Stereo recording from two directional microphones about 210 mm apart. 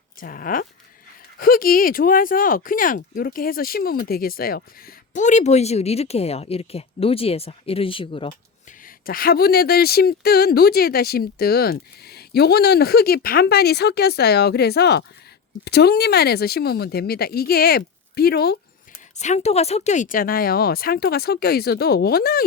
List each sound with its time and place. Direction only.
0.2 s speech: 40° left (ahead or behind); by 8.3 s 25° left (ahead or behind)
9.0 s speech: 45° left (ahead or behind)
19.2 s speech: 30° left (ahead or behind)